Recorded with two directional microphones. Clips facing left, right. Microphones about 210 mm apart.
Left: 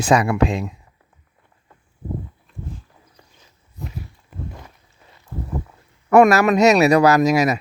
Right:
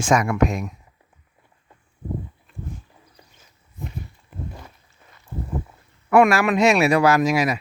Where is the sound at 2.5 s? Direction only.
Centre (ahead or behind).